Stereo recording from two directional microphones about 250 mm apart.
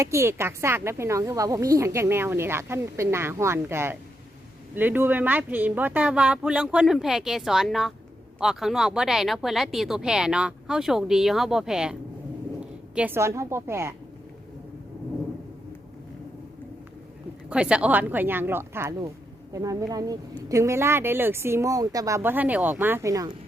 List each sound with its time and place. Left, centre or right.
0.0 s speech: centre
17.5 s speech: centre